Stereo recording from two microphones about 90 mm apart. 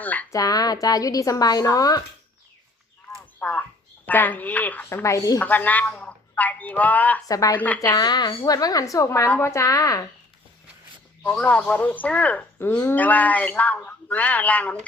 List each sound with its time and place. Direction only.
0.0 s speech: 20° left (ahead or behind)
0.3 s a woman's voice: 40° left (ahead or behind)
3.4 s speech: 20° left (ahead or behind)
5.0 s a woman's voice: 40° left (ahead or behind)
5.4 s a woman's voice: 20° left (ahead or behind)
7.3 s a woman's voice: 40° left (ahead or behind)
7.5 s a woman's voice: 20° left (ahead or behind)
7.9 s a woman's voice: 50° left (ahead or behind)
9.1 s a woman's voice: 20° left (ahead or behind)
9.4 s a woman's voice: 35° left (ahead or behind)
11.2 s speech: 15° left (ahead or behind)